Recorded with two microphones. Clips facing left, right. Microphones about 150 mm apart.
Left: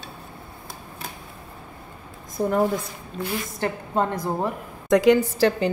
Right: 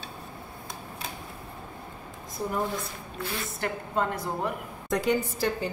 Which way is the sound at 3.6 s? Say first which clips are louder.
Left 4 dB; 30° left (ahead or behind).